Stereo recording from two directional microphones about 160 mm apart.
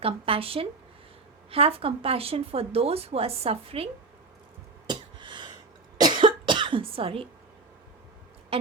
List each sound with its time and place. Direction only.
0.0 s speech: 35° right (ahead or behind)
4.9 s a sound: 30° right (ahead or behind)
6.0 s cough: 30° right (ahead or behind)